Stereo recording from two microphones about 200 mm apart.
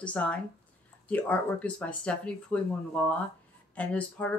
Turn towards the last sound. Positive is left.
turn(degrees=5)  # may be behind; listen again after turning